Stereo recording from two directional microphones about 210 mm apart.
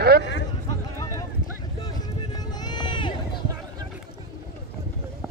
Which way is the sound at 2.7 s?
20° left (ahead or behind).